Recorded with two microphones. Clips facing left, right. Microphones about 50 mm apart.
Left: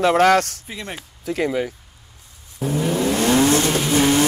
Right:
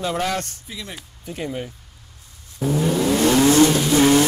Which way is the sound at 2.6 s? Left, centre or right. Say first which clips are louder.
Right 1 dB; centre.